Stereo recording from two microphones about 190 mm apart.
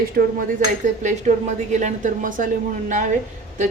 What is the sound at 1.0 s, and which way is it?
A woman's voice, 40° right (ahead or behind).